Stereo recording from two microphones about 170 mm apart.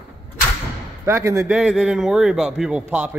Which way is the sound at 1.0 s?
15° right (ahead or behind).